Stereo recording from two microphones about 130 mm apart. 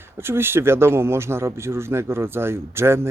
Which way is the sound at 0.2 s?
20° right (ahead or behind).